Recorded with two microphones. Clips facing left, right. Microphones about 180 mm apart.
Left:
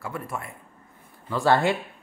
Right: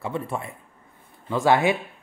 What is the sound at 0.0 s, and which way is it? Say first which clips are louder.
Speech: right 4 dB; 25° right (ahead or behind).